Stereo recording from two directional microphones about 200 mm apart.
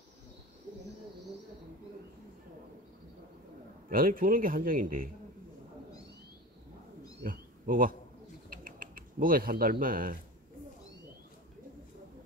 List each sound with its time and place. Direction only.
3.9 s a man's voice: 45° right (ahead or behind)
7.2 s a sound: 45° right (ahead or behind)
8.5 s bird: 45° right (ahead or behind)